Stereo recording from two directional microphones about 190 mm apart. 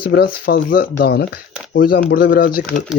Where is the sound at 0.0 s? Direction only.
55° left (ahead or behind).